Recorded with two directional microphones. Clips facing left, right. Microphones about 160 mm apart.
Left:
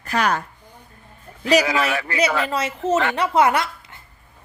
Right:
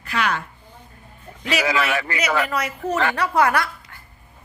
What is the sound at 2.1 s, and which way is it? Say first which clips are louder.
A woman's voice: left 3 dB; 30° left (ahead or behind).